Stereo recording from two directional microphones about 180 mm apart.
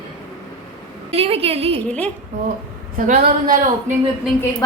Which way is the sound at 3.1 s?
50° right (ahead or behind).